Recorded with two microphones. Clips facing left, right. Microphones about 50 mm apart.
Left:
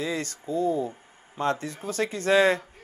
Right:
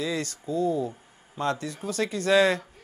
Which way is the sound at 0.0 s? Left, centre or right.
Left.